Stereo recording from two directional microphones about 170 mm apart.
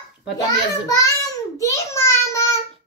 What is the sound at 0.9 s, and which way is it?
Child singing, 20° left (ahead or behind).